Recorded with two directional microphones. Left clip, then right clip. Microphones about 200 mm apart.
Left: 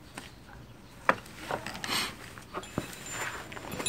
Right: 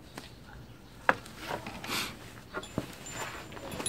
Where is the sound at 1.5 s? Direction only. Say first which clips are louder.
Left 3 dB; 10° right (ahead or behind).